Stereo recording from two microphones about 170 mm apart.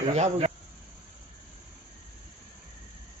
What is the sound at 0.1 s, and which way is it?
Speech, 40° right (ahead or behind).